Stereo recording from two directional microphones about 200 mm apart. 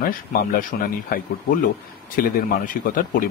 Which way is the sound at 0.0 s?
45° left (ahead or behind).